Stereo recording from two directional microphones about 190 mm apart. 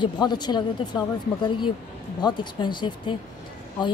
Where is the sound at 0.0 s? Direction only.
20° left (ahead or behind).